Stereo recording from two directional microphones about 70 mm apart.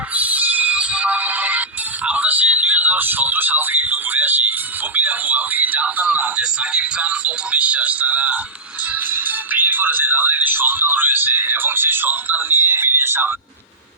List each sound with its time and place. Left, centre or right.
0.1 s music: right
2.0 s a sound: right
4.9 s speech: right